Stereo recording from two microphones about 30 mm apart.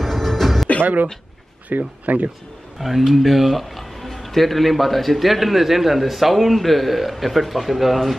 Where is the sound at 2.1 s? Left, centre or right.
Right.